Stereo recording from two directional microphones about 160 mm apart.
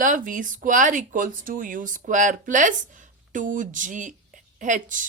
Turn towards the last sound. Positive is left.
turn(degrees=-55)  # may be behind; listen again after turning